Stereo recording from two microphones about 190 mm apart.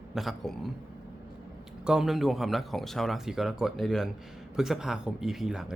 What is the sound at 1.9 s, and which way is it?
Speech, 5° right (ahead or behind).